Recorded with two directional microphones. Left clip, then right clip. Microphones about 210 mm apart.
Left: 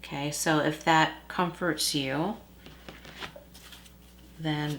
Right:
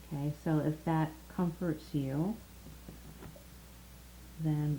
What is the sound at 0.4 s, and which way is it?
Speech, 10° left (ahead or behind).